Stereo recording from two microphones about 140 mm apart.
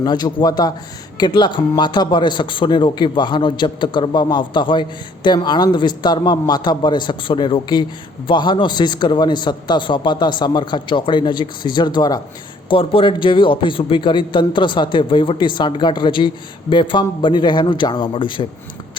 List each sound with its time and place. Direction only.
0.0 s a man's voice: 30° left (ahead or behind)